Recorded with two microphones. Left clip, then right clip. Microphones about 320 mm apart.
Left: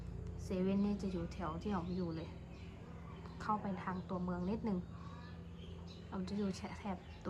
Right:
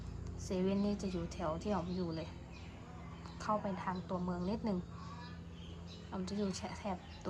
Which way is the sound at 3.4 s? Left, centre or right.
Centre.